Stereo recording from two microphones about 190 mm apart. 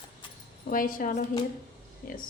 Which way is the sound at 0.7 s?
45° left (ahead or behind).